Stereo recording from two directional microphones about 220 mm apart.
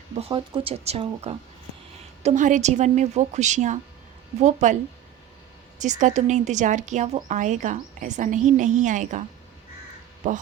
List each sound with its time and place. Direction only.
0.2 s a woman's voice: 20° right (ahead or behind)
5.8 s a woman's voice: 35° right (ahead or behind)